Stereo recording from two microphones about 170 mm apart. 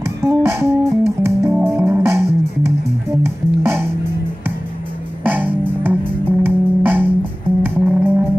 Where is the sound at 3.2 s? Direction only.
15° right (ahead or behind).